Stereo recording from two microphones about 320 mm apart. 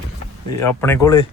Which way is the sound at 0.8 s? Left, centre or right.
Centre.